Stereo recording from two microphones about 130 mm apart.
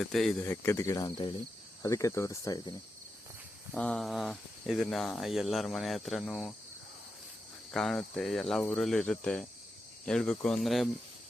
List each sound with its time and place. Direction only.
0.0 s speech: centre (ahead or behind)
0.4 s speech: 20° left (ahead or behind)
3.8 s speech: 5° left (ahead or behind)
7.7 s speech: 5° left (ahead or behind)